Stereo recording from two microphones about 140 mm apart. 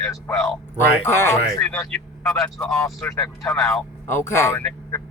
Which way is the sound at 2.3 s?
5° left (ahead or behind).